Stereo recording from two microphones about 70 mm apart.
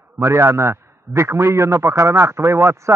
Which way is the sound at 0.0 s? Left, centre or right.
Right.